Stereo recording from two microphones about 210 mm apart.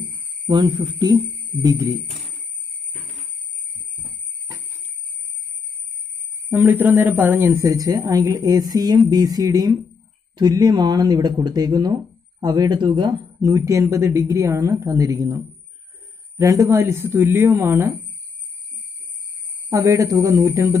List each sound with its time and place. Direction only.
0.5 s speech: 20° right (ahead or behind)
6.5 s speech: 10° right (ahead or behind)
19.7 s speech: 15° right (ahead or behind)